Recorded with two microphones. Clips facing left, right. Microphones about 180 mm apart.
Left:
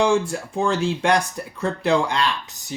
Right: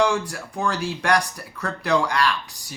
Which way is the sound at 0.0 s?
25° left (ahead or behind).